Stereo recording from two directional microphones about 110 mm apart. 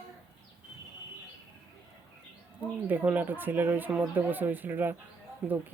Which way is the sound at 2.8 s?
15° right (ahead or behind).